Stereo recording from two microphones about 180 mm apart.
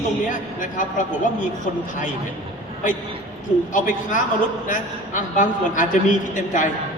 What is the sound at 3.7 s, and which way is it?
A man's voice, 45° left (ahead or behind).